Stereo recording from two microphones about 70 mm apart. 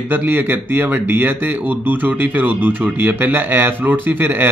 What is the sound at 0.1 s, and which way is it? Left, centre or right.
Speech, right.